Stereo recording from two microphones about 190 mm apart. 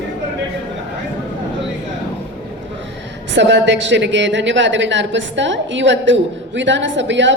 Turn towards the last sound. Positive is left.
turn(degrees=-70)  # may be behind; listen again after turning